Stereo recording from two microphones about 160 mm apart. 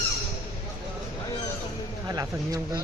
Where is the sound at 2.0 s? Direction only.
25° right (ahead or behind).